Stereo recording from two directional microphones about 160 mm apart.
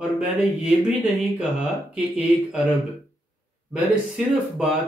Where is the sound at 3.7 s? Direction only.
5° right (ahead or behind).